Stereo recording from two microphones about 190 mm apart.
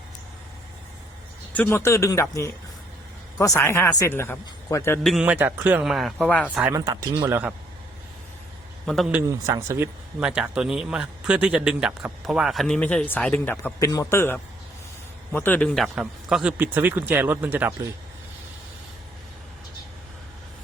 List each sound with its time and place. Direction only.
1.5 s speech: 10° left (ahead or behind)
3.3 s speech: 15° left (ahead or behind)
5.0 s speech: 5° right (ahead or behind)
6.6 s speech: 15° right (ahead or behind)
8.9 s speech: centre (ahead or behind)
9.2 s a man's voice: 15° right (ahead or behind)